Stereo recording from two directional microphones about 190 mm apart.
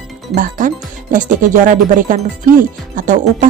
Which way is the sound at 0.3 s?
45° right (ahead or behind).